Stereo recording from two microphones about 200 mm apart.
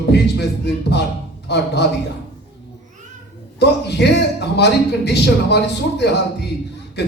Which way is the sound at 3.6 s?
55° left (ahead or behind).